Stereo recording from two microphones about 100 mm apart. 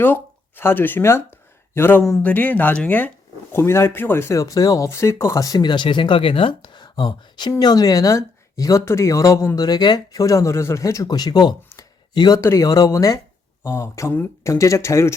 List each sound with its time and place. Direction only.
0.0 s speech: 20° left (ahead or behind); by 7.5 s 50° left (ahead or behind)
7.6 s speech: 40° left (ahead or behind)
12.4 s speech: 30° left (ahead or behind)